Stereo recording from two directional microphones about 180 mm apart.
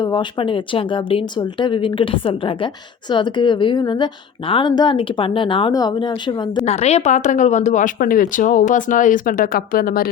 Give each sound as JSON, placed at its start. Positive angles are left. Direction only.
{"t": 0.0, "sound": "a woman's voice", "side_deg": 25}
{"t": 6.7, "sound": "speech", "side_deg": 35}